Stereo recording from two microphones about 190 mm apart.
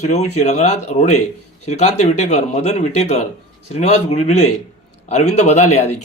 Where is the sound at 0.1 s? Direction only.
35° left (ahead or behind).